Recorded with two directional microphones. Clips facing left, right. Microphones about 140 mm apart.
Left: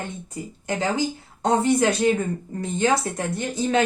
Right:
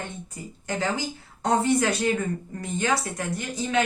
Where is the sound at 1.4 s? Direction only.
25° left (ahead or behind).